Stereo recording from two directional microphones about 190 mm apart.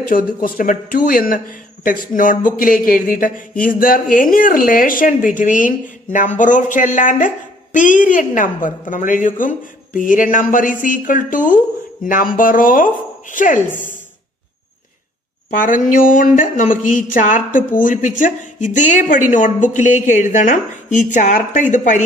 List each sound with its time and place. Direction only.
0.1 s speech: 50° left (ahead or behind)
15.5 s a woman's voice: 45° left (ahead or behind)